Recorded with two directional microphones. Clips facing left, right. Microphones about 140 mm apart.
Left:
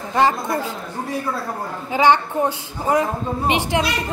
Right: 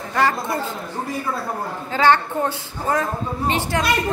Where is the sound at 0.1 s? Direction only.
20° left (ahead or behind).